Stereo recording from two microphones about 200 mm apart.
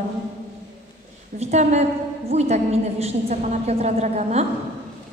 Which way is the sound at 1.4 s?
35° right (ahead or behind).